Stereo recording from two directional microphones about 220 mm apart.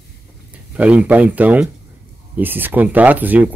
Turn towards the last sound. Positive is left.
turn(degrees=-5)  # may be behind; listen again after turning